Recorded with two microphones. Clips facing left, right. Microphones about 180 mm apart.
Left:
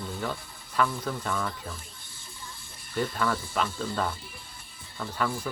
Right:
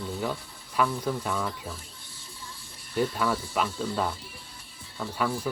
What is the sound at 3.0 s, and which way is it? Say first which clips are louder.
Speech: right 2 dB; 10° right (ahead or behind).